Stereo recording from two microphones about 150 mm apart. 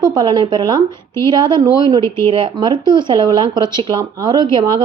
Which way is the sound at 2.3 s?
35° right (ahead or behind).